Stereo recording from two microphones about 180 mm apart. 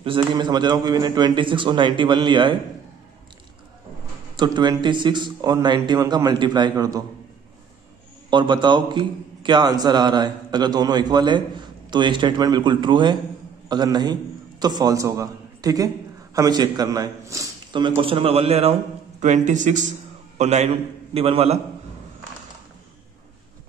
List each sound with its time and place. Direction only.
0.0 s a man's voice: 25° right (ahead or behind)
4.4 s a man's voice: 25° right (ahead or behind)
8.3 s a man's voice: 25° right (ahead or behind)